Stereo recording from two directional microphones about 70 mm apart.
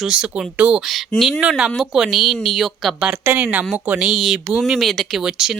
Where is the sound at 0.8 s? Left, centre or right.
Centre.